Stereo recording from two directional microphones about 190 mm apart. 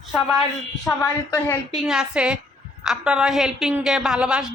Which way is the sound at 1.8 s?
5° right (ahead or behind).